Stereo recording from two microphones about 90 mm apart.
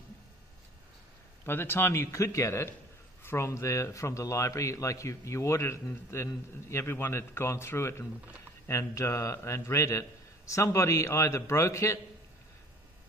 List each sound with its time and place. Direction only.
1.4 s a man's voice: 25° left (ahead or behind)